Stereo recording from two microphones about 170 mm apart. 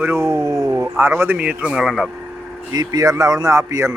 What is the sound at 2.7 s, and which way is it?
Speech, 20° right (ahead or behind).